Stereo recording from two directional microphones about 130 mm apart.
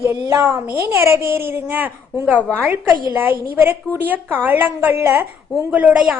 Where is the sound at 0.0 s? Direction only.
20° right (ahead or behind).